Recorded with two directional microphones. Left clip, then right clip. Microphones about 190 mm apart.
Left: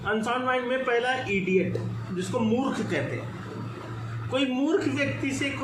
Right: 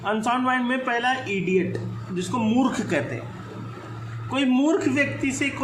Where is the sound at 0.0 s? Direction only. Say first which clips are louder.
Right 3 dB; 50° right (ahead or behind).